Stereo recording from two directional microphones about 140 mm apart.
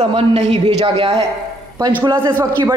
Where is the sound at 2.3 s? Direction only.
15° right (ahead or behind).